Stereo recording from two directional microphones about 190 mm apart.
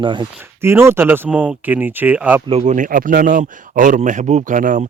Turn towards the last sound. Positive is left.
turn(degrees=-45)  # may be behind; listen again after turning